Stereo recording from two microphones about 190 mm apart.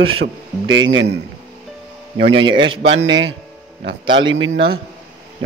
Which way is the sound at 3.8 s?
25° right (ahead or behind).